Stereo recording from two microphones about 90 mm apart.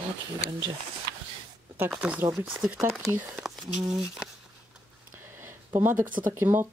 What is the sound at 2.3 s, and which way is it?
Speech, 30° right (ahead or behind).